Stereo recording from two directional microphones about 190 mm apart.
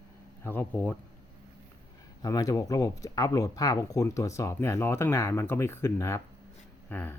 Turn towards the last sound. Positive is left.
turn(degrees=10)  # may be behind; listen again after turning